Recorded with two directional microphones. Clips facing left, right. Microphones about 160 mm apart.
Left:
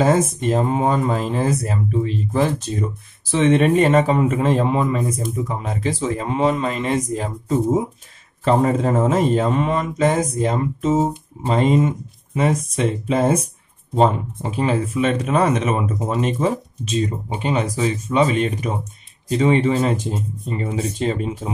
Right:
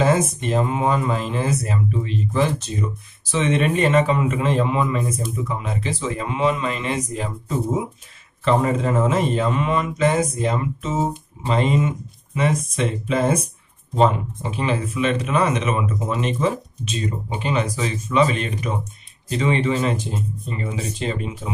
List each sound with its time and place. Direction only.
0.0 s a man's voice: 40° left (ahead or behind)